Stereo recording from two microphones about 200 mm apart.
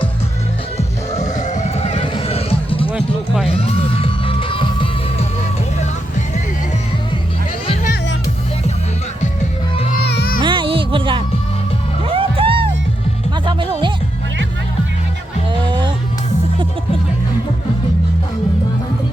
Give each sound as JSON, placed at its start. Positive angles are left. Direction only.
{"t": 0.8, "sound": "music", "side_deg": 35}
{"t": 10.1, "sound": "music", "side_deg": 55}
{"t": 10.4, "sound": "music", "side_deg": -25}
{"t": 15.6, "sound": "music", "side_deg": -25}